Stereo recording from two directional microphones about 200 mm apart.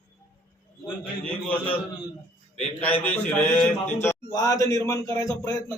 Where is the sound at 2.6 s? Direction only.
5° left (ahead or behind).